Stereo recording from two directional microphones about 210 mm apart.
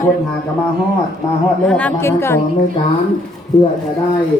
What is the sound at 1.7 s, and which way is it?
Speech, 5° left (ahead or behind).